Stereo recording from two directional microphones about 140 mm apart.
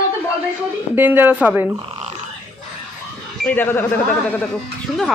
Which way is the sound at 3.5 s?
15° left (ahead or behind).